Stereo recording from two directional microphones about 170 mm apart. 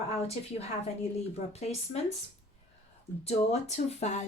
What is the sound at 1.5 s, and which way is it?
Speech, 40° left (ahead or behind).